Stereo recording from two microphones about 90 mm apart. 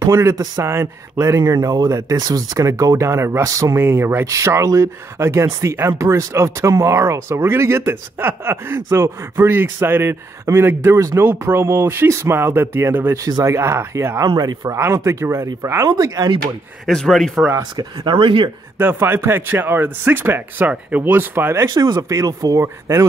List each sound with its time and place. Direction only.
0.0 s speech: 30° right (ahead or behind)
14.8 s speech: 30° right (ahead or behind)
16.8 s speech: 5° left (ahead or behind)
18.0 s speech: 75° right (ahead or behind)
18.8 s speech: 25° right (ahead or behind)
21.6 s speech: 45° right (ahead or behind)